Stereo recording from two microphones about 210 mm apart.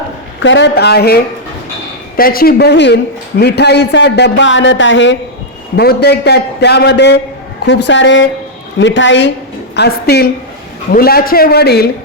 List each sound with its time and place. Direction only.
0.4 s speech: 55° left (ahead or behind)
5.7 s a woman's voice: 50° left (ahead or behind)